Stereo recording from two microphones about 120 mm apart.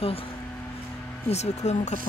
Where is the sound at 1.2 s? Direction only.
65° left (ahead or behind).